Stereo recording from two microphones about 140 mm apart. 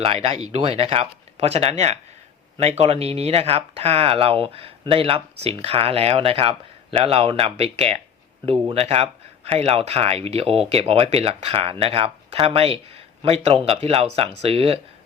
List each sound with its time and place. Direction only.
0.0 s speech: 45° right (ahead or behind)